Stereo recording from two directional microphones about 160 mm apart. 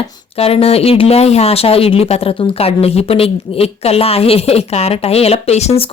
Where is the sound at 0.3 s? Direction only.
40° left (ahead or behind).